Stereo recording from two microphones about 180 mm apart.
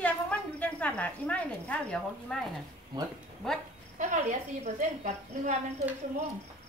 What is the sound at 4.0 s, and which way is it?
Speech, 40° right (ahead or behind).